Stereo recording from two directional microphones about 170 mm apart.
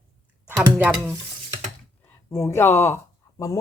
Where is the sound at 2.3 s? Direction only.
15° left (ahead or behind).